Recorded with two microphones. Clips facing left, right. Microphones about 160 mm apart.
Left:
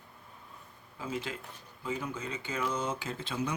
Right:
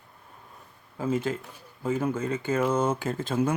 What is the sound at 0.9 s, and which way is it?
Speech, 50° right (ahead or behind).